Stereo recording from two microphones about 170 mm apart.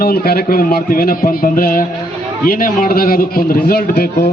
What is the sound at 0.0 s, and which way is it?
A man's voice, 60° left (ahead or behind).